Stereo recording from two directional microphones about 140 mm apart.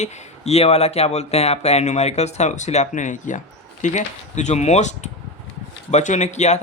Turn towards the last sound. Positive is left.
turn(degrees=55)  # may be behind; listen again after turning